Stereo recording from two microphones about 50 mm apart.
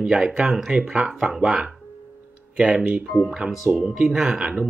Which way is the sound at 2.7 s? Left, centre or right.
Centre.